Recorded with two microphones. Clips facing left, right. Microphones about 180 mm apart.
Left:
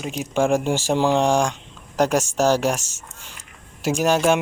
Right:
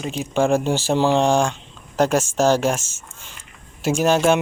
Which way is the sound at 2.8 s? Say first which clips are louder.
Even; 40° left (ahead or behind).